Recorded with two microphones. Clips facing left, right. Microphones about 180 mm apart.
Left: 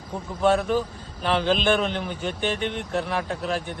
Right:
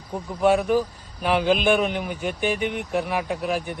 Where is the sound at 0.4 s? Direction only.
10° right (ahead or behind).